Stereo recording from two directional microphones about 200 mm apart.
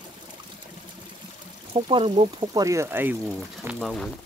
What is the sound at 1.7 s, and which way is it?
Speech, 25° right (ahead or behind).